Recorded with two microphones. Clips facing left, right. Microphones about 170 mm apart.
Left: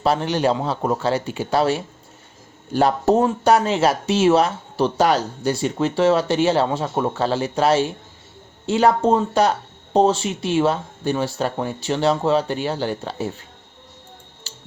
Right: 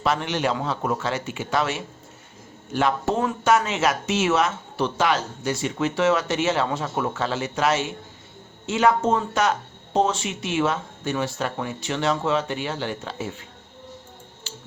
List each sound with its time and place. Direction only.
0.0 s speech: 35° left (ahead or behind)
14.5 s music: 40° left (ahead or behind)